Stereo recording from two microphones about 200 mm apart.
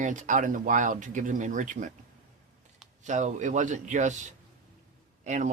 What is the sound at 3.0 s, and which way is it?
Speech, 35° right (ahead or behind).